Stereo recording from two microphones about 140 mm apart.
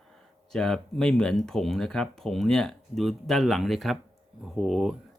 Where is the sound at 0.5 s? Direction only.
5° left (ahead or behind).